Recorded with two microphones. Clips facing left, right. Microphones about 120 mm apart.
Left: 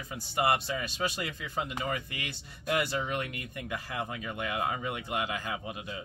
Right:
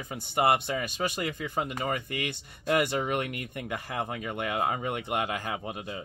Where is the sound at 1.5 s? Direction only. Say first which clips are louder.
Right 1 dB; 50° right (ahead or behind).